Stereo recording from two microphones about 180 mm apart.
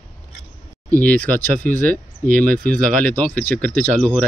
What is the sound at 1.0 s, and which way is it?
Speech, 10° left (ahead or behind).